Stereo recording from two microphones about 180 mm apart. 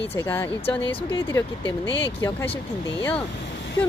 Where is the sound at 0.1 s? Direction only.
10° left (ahead or behind).